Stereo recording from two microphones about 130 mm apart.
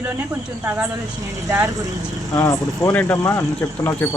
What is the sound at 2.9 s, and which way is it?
Speech, 15° left (ahead or behind).